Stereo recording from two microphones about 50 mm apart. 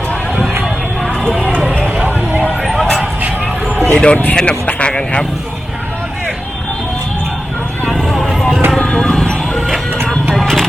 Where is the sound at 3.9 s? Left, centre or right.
Left.